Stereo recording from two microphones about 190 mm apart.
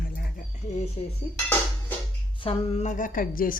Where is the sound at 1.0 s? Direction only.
30° left (ahead or behind).